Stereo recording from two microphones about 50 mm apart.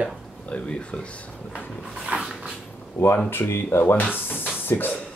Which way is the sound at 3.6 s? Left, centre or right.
Left.